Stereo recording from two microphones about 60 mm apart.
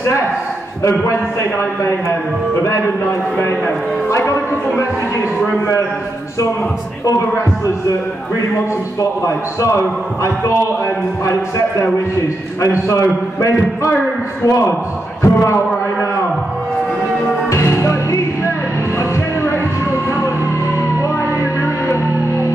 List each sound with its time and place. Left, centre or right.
0.8 s a man's voice: left
4.1 s a man's voice: left
7.1 s a man's voice: left
9.2 s a man's voice: left
12.8 s a man's voice: left
17.5 s music: left